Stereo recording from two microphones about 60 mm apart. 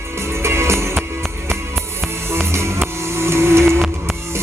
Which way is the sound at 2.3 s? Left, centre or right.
Right.